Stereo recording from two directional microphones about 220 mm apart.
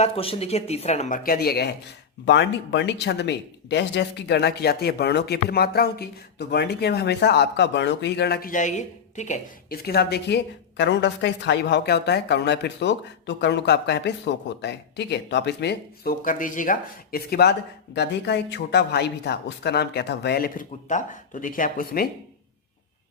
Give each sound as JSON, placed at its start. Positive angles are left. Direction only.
{"t": 0.0, "sound": "speech", "side_deg": 25}